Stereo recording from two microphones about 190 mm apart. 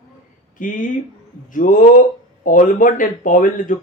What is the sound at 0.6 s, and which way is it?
Speech, 45° left (ahead or behind).